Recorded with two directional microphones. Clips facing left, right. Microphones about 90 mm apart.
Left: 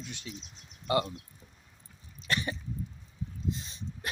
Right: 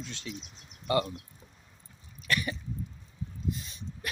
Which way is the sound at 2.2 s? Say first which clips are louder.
Right 1 dB; 25° left (ahead or behind).